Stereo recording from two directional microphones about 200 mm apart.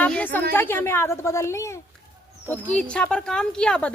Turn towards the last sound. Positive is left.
turn(degrees=5)  # may be behind; listen again after turning